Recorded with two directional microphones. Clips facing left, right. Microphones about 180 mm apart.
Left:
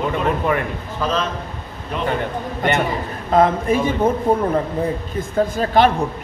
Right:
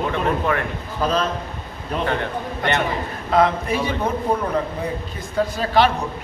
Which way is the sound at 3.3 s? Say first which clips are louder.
Left 3 dB; 45° left (ahead or behind).